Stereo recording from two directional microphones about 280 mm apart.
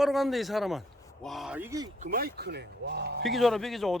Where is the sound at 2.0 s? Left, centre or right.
Right.